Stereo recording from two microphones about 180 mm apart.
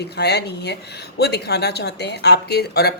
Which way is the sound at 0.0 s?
65° left (ahead or behind).